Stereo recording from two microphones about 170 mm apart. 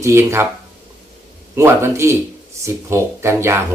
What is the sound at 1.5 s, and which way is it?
Speech, 15° right (ahead or behind).